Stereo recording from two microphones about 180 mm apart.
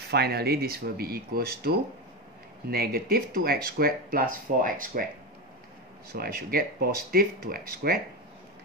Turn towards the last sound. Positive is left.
turn(degrees=-55)  # may be behind; listen again after turning